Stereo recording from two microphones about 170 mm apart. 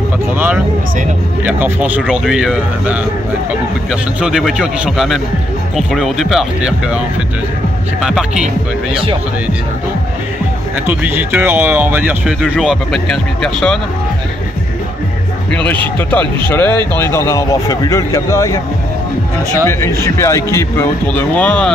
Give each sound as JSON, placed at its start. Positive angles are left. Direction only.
{"t": 1.4, "sound": "a man's voice", "side_deg": -10}
{"t": 8.0, "sound": "a man's voice", "side_deg": -5}
{"t": 10.9, "sound": "speech", "side_deg": -10}
{"t": 15.5, "sound": "speech", "side_deg": 10}